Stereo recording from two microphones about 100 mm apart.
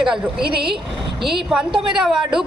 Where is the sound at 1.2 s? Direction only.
Centre (ahead or behind).